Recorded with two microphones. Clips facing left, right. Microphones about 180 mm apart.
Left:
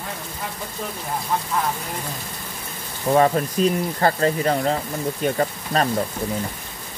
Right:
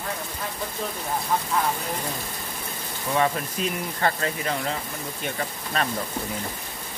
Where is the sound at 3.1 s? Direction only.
40° left (ahead or behind).